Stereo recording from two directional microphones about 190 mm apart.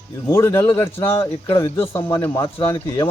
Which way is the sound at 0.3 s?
15° left (ahead or behind).